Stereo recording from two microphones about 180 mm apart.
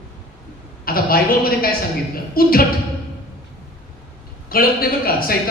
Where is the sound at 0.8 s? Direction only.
55° left (ahead or behind).